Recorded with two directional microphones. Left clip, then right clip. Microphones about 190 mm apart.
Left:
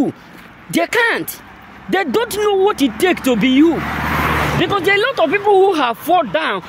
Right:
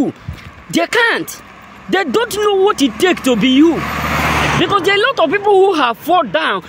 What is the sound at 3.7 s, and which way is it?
Vehicle, 50° right (ahead or behind).